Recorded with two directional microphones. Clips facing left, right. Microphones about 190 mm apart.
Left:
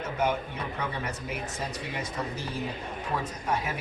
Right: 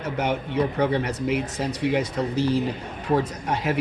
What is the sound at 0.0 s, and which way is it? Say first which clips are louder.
Speech: right 3 dB; 75° right (ahead or behind).